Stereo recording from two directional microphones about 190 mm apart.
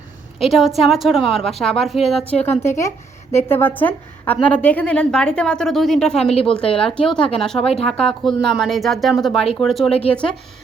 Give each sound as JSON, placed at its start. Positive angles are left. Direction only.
{"t": 0.3, "sound": "a woman's voice", "side_deg": 0}